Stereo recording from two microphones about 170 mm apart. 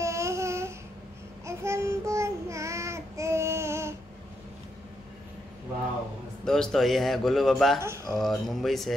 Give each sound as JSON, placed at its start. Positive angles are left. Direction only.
{"t": 0.0, "sound": "a sound", "side_deg": -15}
{"t": 1.4, "sound": "child singing", "side_deg": -15}
{"t": 6.4, "sound": "speech", "side_deg": 5}
{"t": 7.8, "sound": "speech", "side_deg": -15}
{"t": 8.2, "sound": "speech", "side_deg": 0}